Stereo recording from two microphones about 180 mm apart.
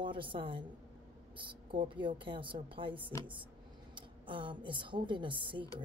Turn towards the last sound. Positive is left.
turn(degrees=-25)  # may be behind; listen again after turning